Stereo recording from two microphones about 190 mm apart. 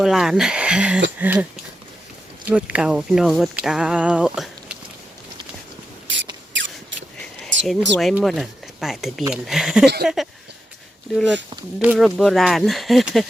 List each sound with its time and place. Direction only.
0.0 s speech: centre (ahead or behind)
1.2 s a sound: 10° right (ahead or behind)
2.4 s speech: 10° right (ahead or behind)
6.1 s rodents: 75° right (ahead or behind)
7.4 s speech: centre (ahead or behind)
9.8 s speech: 55° right (ahead or behind)
11.8 s speech: 5° right (ahead or behind)